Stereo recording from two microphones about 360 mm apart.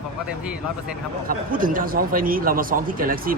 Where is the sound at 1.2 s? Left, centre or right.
Right.